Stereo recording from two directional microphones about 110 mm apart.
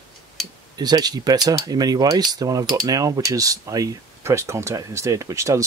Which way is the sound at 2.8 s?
35° right (ahead or behind).